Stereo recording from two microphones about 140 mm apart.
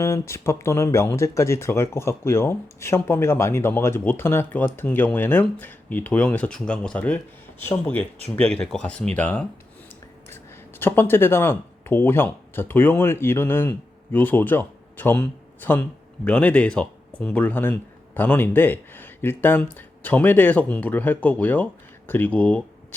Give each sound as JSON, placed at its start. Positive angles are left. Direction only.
{"t": 0.0, "sound": "speech", "side_deg": 20}